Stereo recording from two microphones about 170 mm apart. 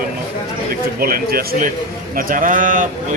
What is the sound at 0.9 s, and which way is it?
Speech, 60° right (ahead or behind).